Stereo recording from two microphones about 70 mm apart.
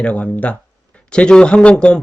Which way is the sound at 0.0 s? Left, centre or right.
Left.